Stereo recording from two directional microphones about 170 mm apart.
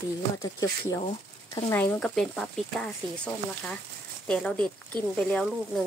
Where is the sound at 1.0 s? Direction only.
30° left (ahead or behind).